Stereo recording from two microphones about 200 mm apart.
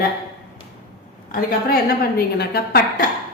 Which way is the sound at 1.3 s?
50° left (ahead or behind).